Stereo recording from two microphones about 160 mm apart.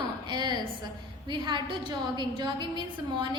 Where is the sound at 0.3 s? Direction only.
25° right (ahead or behind).